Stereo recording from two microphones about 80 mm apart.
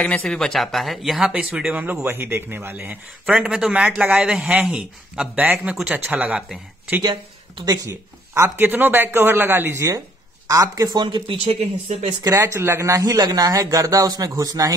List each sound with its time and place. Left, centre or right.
0.0 s speech: centre
1.7 s speech: right
3.3 s speech: centre
7.0 s speech: right
8.5 s speech: right
10.5 s a man's voice: right
11.0 s speech: right
12.2 s a man's voice: right
12.5 s a man's voice: right